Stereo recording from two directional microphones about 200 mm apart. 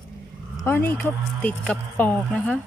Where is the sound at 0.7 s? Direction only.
10° left (ahead or behind).